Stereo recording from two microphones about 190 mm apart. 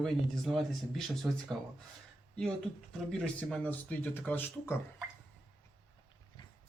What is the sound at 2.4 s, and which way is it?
Speech, 5° left (ahead or behind).